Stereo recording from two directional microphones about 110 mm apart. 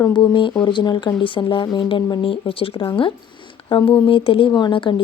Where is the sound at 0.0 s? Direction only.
45° left (ahead or behind).